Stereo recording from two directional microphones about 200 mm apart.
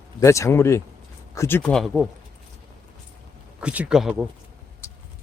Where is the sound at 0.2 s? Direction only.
15° left (ahead or behind); by 2.0 s centre (ahead or behind).